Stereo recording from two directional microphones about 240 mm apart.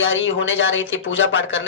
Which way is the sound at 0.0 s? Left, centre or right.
Left.